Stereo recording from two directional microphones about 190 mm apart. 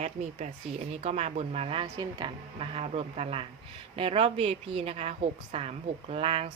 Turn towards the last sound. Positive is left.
turn(degrees=-30)  # may be behind; listen again after turning